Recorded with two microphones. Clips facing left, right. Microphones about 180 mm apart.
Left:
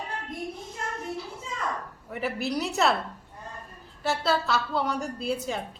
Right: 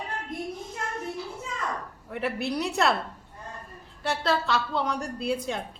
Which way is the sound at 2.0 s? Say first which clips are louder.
Right 1 dB; centre (ahead or behind).